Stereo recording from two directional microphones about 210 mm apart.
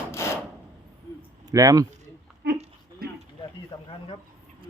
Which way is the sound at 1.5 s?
15° right (ahead or behind).